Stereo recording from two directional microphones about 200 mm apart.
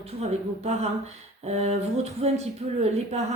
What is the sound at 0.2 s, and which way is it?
Speech, 30° right (ahead or behind).